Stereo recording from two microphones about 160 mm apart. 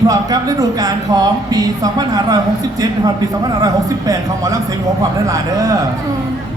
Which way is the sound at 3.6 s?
20° right (ahead or behind).